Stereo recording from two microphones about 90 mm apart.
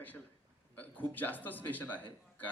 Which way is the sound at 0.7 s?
20° left (ahead or behind).